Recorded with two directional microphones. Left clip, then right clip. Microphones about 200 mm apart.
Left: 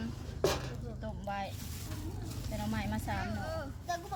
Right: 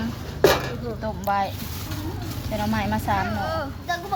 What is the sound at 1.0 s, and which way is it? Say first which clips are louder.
Speech: right 15 dB; 10° left (ahead or behind).